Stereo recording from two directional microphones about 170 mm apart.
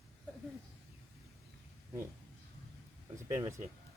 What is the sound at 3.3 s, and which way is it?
Speech, 15° right (ahead or behind).